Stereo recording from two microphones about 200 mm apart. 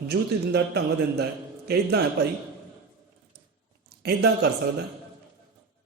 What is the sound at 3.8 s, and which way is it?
Speech, 55° right (ahead or behind).